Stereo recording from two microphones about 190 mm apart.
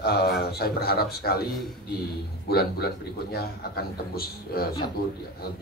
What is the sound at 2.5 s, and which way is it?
Speech, 55° left (ahead or behind).